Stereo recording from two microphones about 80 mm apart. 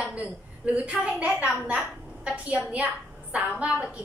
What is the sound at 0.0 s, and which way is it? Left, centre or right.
A woman's voice, centre.